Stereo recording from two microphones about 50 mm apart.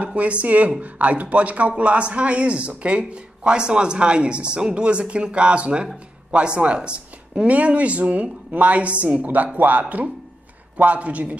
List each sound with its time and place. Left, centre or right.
0.0 s speech: right